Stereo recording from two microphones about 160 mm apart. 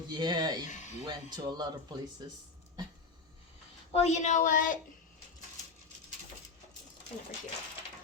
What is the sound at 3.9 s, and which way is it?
Speech, 45° left (ahead or behind).